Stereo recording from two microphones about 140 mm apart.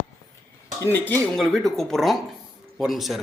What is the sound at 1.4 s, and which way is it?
Speech, centre (ahead or behind).